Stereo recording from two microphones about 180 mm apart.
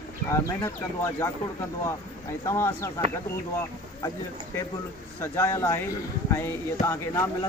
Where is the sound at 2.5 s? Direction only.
15° left (ahead or behind).